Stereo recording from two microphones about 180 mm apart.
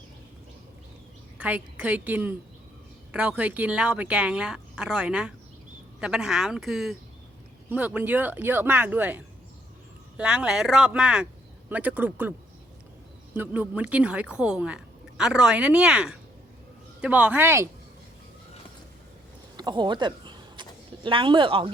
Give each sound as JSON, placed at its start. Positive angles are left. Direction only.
{"t": 1.4, "sound": "speech", "side_deg": -10}
{"t": 13.3, "sound": "speech", "side_deg": -10}
{"t": 19.5, "sound": "a sound", "side_deg": -25}
{"t": 21.0, "sound": "speech", "side_deg": -30}